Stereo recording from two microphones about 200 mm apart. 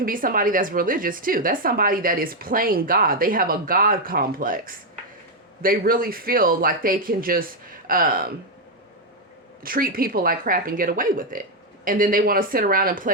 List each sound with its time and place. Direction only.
0.0 s a woman's voice: 45° right (ahead or behind)
9.6 s a woman's voice: 45° right (ahead or behind)